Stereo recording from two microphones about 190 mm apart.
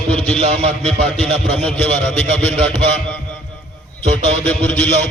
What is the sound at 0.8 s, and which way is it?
A man's voice, 5° left (ahead or behind).